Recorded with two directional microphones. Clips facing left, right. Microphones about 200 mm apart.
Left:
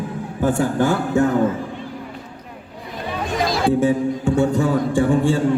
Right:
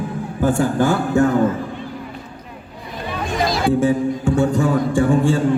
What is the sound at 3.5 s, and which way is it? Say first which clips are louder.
Speech: even; 25° left (ahead or behind).